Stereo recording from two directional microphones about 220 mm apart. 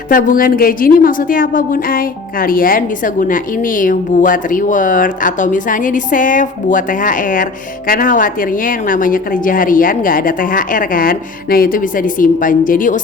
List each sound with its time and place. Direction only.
0.1 s a woman's voice: 40° left (ahead or behind)